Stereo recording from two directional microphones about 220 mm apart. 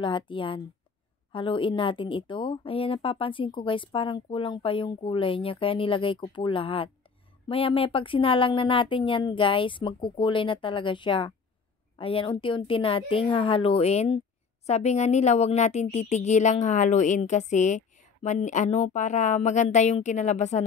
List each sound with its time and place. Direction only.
0.0 s a woman's voice: 20° left (ahead or behind)